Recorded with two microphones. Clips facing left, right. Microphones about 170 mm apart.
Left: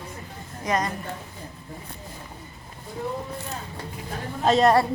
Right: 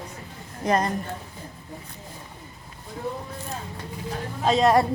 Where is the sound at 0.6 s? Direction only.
30° right (ahead or behind).